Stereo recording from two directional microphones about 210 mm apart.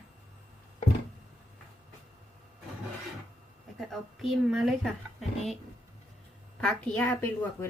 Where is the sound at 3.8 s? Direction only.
Centre (ahead or behind).